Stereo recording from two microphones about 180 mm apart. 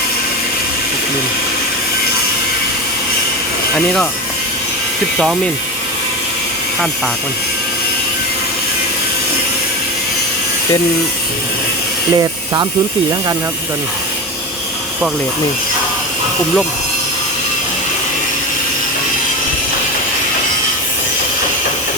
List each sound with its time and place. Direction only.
12.1 s speech: 20° right (ahead or behind)